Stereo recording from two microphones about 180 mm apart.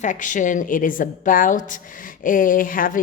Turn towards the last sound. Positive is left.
turn(degrees=50)  # may be behind; listen again after turning